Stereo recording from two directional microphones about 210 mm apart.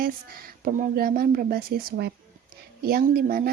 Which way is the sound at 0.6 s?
45° right (ahead or behind).